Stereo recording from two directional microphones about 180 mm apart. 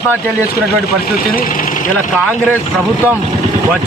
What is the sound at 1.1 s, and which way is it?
Speech, 50° left (ahead or behind).